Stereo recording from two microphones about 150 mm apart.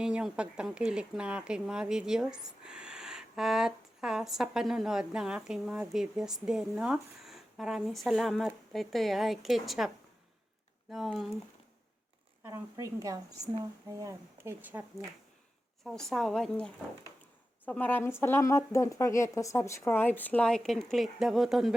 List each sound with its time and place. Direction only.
0.0 s a woman's voice: 5° right (ahead or behind)
12.7 s a woman's voice: 25° right (ahead or behind)
15.8 s a woman's voice: centre (ahead or behind)